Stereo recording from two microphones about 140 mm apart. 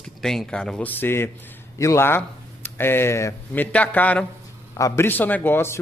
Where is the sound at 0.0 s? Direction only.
5° left (ahead or behind).